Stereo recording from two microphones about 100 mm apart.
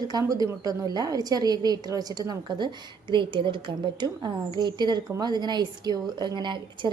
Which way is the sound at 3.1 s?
55° right (ahead or behind).